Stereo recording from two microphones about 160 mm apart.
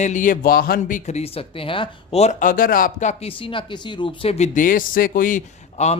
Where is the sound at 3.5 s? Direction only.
30° left (ahead or behind); by 5.4 s 60° left (ahead or behind).